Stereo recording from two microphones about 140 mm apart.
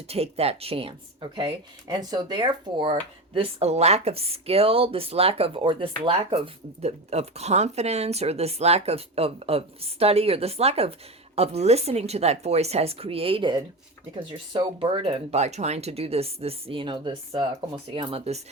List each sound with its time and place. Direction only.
0.1 s a woman's voice: 45° right (ahead or behind)